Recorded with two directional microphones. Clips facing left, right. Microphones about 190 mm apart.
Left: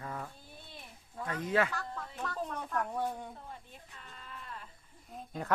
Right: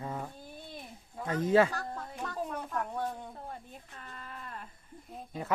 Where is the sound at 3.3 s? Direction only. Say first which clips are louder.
Right 5 dB; 50° right (ahead or behind).